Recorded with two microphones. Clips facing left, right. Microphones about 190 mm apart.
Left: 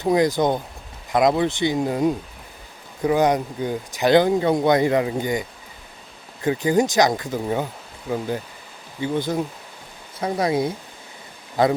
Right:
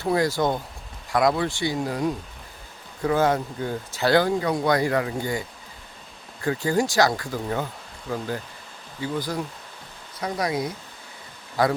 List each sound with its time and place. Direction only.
0.0 s speech: 20° left (ahead or behind)